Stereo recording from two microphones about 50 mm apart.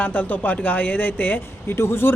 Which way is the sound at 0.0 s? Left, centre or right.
Left.